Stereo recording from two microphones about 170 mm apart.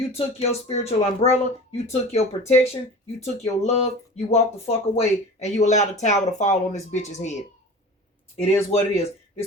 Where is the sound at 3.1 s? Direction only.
40° left (ahead or behind).